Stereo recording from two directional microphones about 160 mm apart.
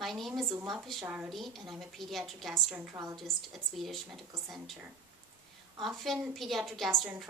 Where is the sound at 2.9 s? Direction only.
20° right (ahead or behind).